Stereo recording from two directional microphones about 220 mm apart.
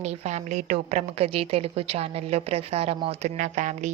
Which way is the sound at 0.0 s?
30° right (ahead or behind).